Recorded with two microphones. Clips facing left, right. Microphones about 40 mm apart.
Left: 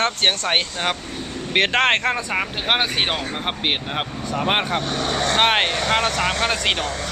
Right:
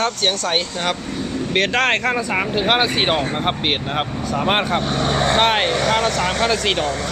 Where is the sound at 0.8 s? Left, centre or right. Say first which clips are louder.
Right 2 dB; centre.